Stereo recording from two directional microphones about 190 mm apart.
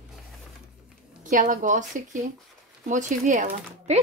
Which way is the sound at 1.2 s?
45° right (ahead or behind).